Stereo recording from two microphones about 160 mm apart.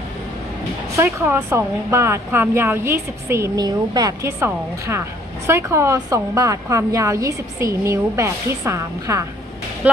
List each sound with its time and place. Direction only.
0.9 s a woman's voice: 15° right (ahead or behind)
5.5 s a woman's voice: 15° right (ahead or behind)